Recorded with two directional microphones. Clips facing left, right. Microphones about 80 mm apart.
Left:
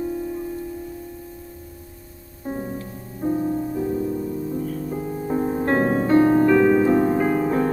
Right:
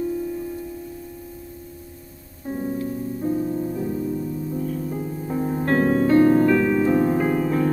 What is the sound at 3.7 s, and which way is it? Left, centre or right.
Music, centre.